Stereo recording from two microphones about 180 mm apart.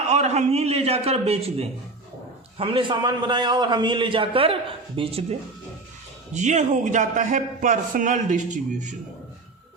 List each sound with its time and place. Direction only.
0.1 s a man's voice: 40° right (ahead or behind)
6.3 s a man's voice: 40° right (ahead or behind)